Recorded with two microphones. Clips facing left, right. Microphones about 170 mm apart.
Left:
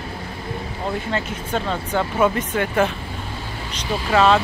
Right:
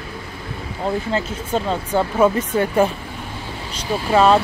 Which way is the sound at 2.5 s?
35° right (ahead or behind).